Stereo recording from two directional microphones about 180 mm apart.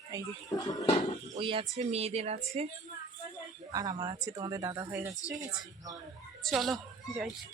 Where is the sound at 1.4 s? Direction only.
30° right (ahead or behind).